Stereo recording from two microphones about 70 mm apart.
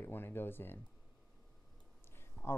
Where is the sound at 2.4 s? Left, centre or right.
Centre.